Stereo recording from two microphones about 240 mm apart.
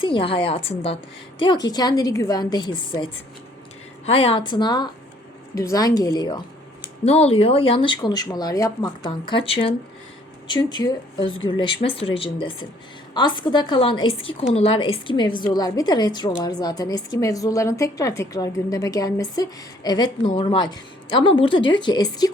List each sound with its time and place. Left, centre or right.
0.0 s a woman's voice: left
4.0 s a woman's voice: left